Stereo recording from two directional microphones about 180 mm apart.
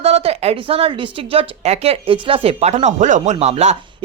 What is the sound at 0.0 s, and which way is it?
Speech, 35° right (ahead or behind).